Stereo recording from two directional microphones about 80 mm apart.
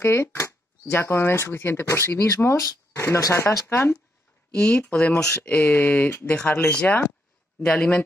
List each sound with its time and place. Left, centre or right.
0.0 s speech: left
3.6 s speech: left
4.6 s speech: centre